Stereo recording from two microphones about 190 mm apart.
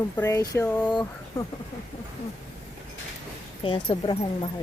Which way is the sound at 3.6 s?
25° left (ahead or behind).